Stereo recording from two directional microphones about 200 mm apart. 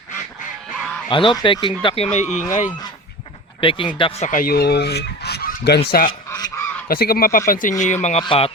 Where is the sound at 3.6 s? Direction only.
25° left (ahead or behind).